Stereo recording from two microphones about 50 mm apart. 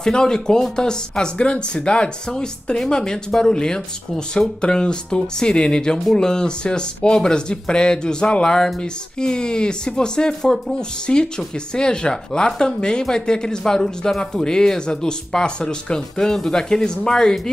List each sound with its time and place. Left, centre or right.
0.0 s speech: centre